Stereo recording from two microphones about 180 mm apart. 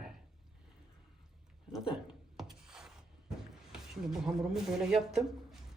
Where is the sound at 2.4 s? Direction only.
5° right (ahead or behind).